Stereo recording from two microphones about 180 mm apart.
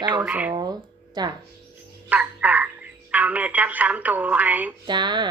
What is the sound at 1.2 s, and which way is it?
Speech, 25° right (ahead or behind).